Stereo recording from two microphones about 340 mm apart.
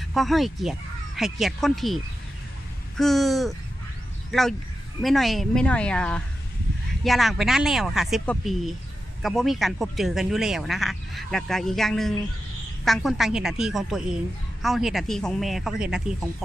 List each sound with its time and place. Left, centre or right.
0.1 s speech: centre
3.0 s speech: centre